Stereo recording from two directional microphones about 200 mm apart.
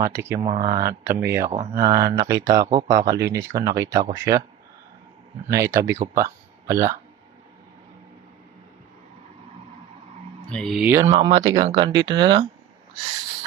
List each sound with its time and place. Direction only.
0.0 s speech: 10° right (ahead or behind)
0.5 s speech: 25° right (ahead or behind)
0.8 s speech: 10° right (ahead or behind)
1.5 s speech: 35° right (ahead or behind)
1.9 s speech: 20° right (ahead or behind)
5.5 s speech: 15° right (ahead or behind)
10.5 s speech: centre (ahead or behind)
11.1 s speech: 30° right (ahead or behind)